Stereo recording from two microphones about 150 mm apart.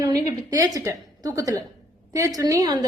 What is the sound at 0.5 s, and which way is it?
A woman's voice, 20° right (ahead or behind).